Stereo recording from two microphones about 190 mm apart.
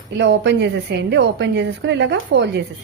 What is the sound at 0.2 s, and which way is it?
A woman's voice, 65° right (ahead or behind).